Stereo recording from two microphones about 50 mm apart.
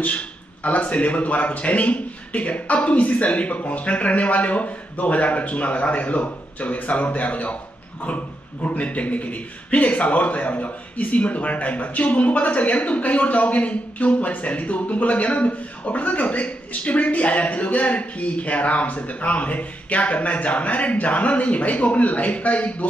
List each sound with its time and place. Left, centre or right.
0.7 s a man's voice: left
8.6 s a man's voice: left